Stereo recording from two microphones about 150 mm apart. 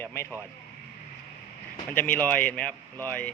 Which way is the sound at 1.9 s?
10° left (ahead or behind).